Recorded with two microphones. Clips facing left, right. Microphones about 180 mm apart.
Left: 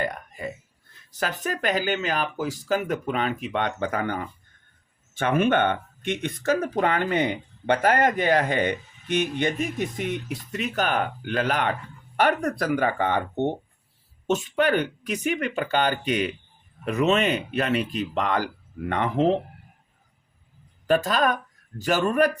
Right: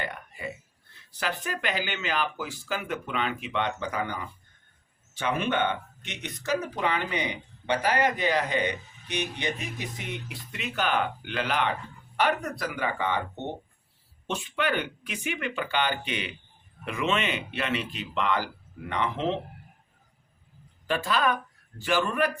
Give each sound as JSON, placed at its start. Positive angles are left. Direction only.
{"t": 0.0, "sound": "burping", "side_deg": 40}
{"t": 1.1, "sound": "speech", "side_deg": 45}
{"t": 20.8, "sound": "speech", "side_deg": 45}